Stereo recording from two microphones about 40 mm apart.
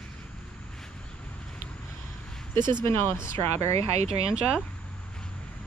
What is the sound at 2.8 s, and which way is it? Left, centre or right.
Speech, left.